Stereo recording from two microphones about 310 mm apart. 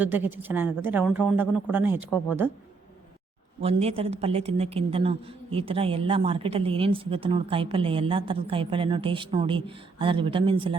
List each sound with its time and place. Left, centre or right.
0.0 s a woman's voice: centre
3.6 s a woman's voice: centre